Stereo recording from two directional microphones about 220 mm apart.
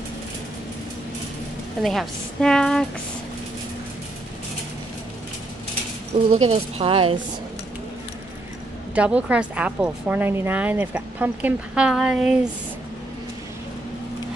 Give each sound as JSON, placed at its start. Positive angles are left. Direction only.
{"t": 1.8, "sound": "a woman's voice", "side_deg": 0}
{"t": 6.3, "sound": "a woman's voice", "side_deg": -30}
{"t": 8.9, "sound": "a woman's voice", "side_deg": -5}